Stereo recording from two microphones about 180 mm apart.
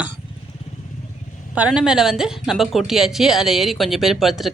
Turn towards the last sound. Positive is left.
turn(degrees=0)  # may be behind; listen again after turning